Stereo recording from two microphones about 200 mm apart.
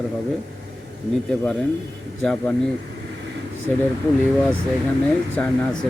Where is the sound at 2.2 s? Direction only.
5° left (ahead or behind).